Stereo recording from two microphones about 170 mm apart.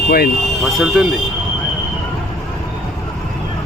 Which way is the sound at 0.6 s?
Centre (ahead or behind).